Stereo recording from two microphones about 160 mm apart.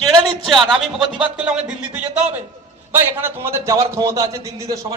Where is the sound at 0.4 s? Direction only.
Centre (ahead or behind).